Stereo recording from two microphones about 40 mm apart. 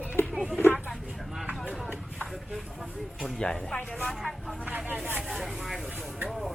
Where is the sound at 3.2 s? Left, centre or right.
Centre.